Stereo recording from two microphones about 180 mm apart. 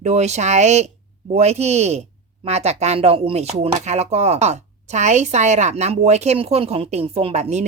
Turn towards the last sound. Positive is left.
turn(degrees=-35)  # may be behind; listen again after turning